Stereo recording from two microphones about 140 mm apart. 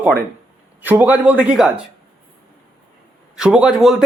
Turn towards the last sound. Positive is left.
turn(degrees=0)  # may be behind; listen again after turning